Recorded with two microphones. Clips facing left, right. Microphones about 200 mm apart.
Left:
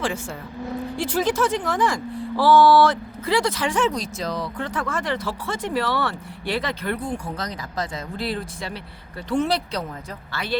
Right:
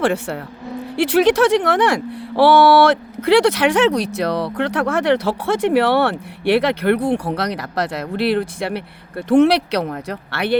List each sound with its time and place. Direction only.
0.0 s speech: 65° right (ahead or behind)